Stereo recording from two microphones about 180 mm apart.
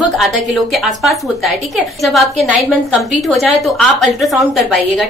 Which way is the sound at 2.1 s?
5° right (ahead or behind).